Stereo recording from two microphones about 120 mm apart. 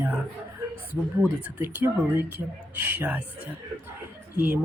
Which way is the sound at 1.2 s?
15° right (ahead or behind).